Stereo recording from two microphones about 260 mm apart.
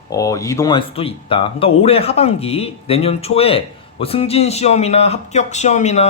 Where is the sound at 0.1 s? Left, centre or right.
Centre.